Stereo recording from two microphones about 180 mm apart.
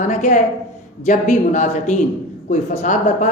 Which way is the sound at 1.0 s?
40° left (ahead or behind).